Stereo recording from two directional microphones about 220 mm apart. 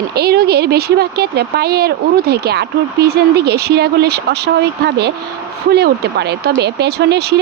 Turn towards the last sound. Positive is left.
turn(degrees=-50)  # may be behind; listen again after turning